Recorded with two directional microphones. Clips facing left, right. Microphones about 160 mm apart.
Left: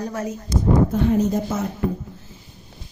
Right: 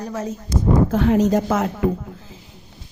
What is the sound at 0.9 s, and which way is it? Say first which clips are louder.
A woman's voice: right 3 dB; 90° right.